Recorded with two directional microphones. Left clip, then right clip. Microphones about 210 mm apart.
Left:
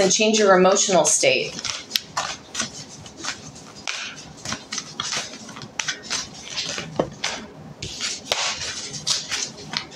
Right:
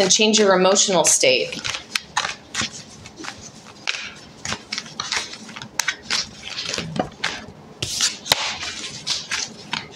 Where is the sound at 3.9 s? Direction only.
20° right (ahead or behind).